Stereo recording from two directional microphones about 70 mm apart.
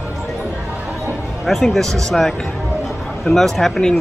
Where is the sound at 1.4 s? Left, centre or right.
Centre.